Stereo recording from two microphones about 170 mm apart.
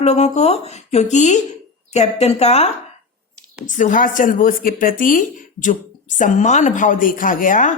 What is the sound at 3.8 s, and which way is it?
Speech, 50° left (ahead or behind).